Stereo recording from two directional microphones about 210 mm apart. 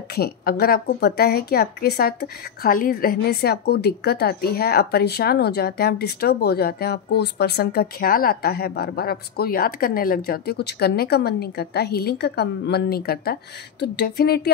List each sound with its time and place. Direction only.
0.1 s a woman's voice: 50° left (ahead or behind)